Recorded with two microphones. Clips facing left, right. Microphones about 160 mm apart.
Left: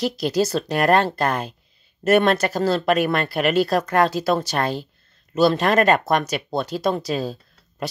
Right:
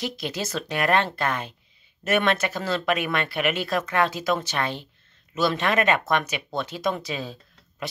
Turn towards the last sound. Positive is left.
turn(degrees=35)  # may be behind; listen again after turning